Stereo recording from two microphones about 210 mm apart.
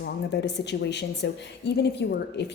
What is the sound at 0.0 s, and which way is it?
Speech, 55° left (ahead or behind).